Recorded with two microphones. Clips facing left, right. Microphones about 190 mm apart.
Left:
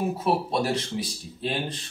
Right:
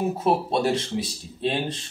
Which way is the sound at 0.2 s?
25° right (ahead or behind).